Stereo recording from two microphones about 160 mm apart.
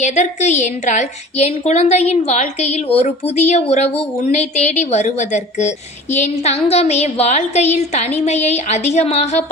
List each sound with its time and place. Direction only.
0.0 s a woman's voice: 45° left (ahead or behind)